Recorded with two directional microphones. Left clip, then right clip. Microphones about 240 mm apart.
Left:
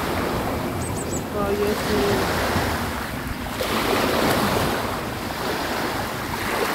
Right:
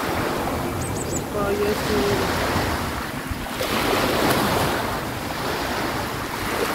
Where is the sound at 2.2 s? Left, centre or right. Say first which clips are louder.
Even; left.